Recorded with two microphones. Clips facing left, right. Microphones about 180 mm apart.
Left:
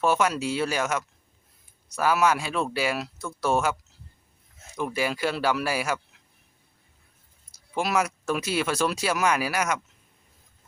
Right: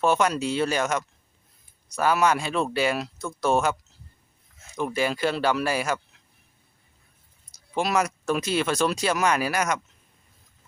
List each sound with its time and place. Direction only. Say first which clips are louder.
0.0 s speech: right 1 dB; 5° left (ahead or behind)
4.9 s speech: right 2 dB; 10° left (ahead or behind)
7.8 s speech: right 1 dB; 5° left (ahead or behind)